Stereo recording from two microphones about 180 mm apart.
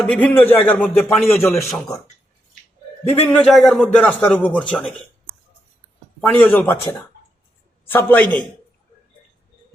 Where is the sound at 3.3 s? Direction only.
5° left (ahead or behind).